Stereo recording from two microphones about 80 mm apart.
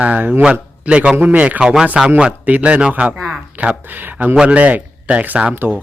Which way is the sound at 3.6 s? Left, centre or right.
Right.